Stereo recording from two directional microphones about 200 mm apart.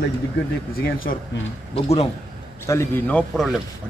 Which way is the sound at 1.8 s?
30° left (ahead or behind).